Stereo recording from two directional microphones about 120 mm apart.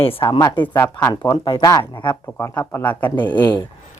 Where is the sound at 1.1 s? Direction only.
40° left (ahead or behind).